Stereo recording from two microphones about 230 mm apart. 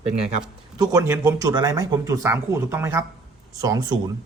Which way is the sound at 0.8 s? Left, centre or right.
Centre.